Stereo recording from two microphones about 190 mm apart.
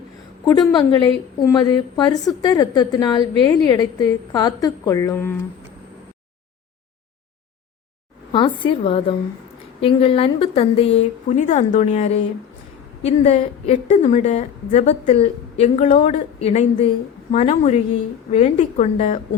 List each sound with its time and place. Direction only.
0.4 s a woman's voice: 25° left (ahead or behind)
8.3 s a woman's voice: 25° left (ahead or behind)